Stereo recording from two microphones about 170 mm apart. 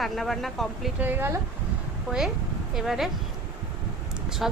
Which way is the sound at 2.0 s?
Centre (ahead or behind).